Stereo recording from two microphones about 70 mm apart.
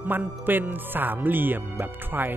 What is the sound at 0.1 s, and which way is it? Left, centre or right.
Speech, right.